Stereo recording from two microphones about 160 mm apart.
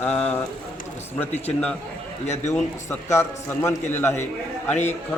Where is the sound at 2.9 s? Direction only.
15° left (ahead or behind).